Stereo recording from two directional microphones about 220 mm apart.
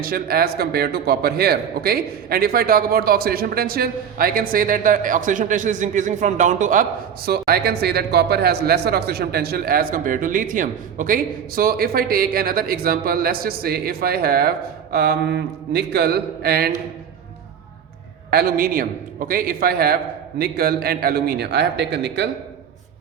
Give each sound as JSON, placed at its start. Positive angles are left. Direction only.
{"t": 0.0, "sound": "speech", "side_deg": -45}
{"t": 18.3, "sound": "a man's voice", "side_deg": -45}